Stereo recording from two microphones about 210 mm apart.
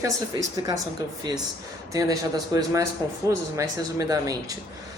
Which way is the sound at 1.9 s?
15° right (ahead or behind).